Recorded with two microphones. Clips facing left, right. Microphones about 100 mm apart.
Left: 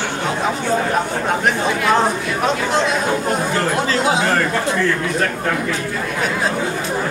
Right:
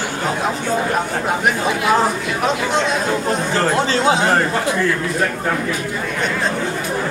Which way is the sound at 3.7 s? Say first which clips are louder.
Right 2 dB; 25° right (ahead or behind).